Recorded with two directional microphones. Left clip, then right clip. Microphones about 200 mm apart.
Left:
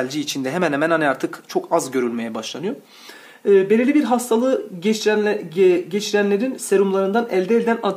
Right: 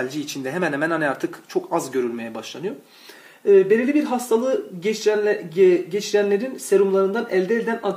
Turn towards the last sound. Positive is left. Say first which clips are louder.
# left 3 dB
turn(degrees=30)  # may be behind; listen again after turning